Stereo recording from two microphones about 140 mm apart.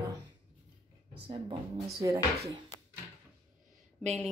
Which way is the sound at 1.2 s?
40° right (ahead or behind).